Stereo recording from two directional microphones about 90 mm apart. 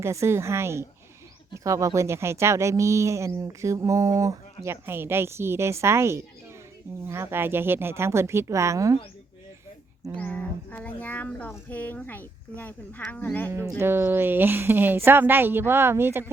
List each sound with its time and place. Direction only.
0.0 s a woman's voice: 30° right (ahead or behind)
10.2 s speech: 15° left (ahead or behind)
13.5 s a woman's voice: 30° right (ahead or behind)